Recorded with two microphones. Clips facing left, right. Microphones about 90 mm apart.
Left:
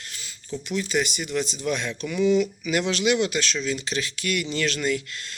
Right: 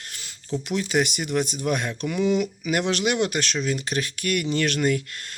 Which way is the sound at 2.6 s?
45° right (ahead or behind).